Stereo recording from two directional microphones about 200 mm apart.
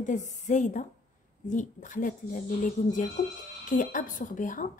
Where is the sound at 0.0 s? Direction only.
40° left (ahead or behind).